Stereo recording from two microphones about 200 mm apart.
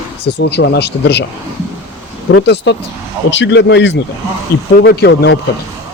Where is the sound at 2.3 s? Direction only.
60° left (ahead or behind).